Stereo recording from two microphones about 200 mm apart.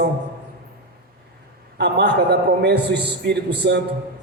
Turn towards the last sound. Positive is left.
turn(degrees=-55)  # may be behind; listen again after turning